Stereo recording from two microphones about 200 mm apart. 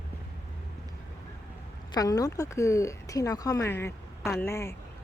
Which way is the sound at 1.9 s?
20° left (ahead or behind).